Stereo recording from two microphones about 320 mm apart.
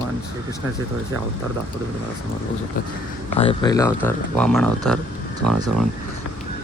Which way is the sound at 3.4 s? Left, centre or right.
Centre.